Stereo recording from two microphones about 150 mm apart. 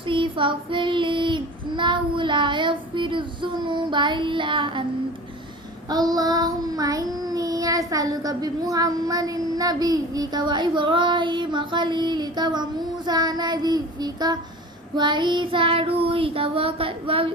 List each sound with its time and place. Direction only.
0.0 s child singing: 35° right (ahead or behind)
5.9 s child singing: 25° right (ahead or behind)